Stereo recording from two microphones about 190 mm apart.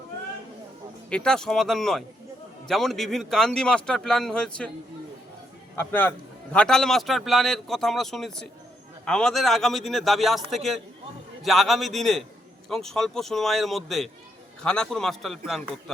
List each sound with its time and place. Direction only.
1.1 s a man's voice: 5° left (ahead or behind)
5.7 s a man's voice: 10° left (ahead or behind)